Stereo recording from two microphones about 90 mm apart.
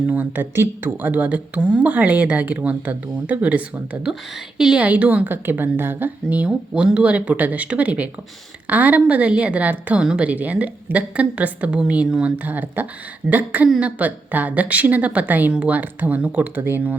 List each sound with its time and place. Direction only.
0.1 s speech: 20° right (ahead or behind)
1.1 s a woman's voice: 15° right (ahead or behind)